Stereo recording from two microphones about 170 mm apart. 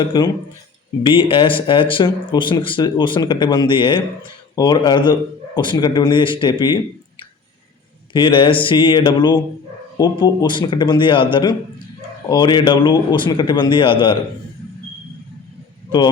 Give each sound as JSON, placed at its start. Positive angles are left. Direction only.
{"t": 0.0, "sound": "speech", "side_deg": 25}
{"t": 8.1, "sound": "speech", "side_deg": 30}